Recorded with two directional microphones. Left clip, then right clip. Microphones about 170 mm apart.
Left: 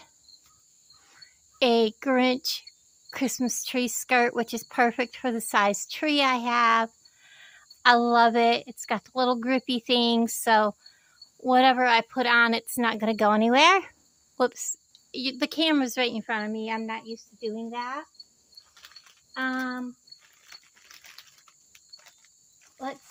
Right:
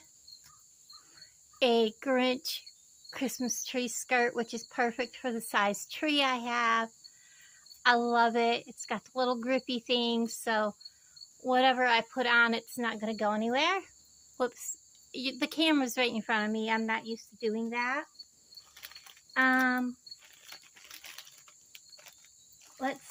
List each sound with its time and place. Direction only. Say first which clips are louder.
1.1 s a woman's voice: left 3 dB; 35° left (ahead or behind); by 13.9 s 60° left (ahead or behind)
14.3 s speech: left 7 dB; 40° left (ahead or behind)
15.1 s speech: left 5 dB; 30° left (ahead or behind); by 18.1 s centre (ahead or behind)
19.3 s speech: right 4 dB; centre (ahead or behind)
20.4 s a sound: left 1 dB; 20° right (ahead or behind)